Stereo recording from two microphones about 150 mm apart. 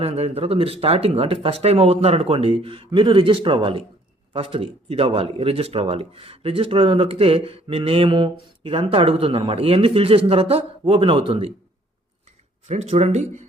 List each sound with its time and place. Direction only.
0.0 s speech: 45° right (ahead or behind)
12.6 s speech: 45° right (ahead or behind)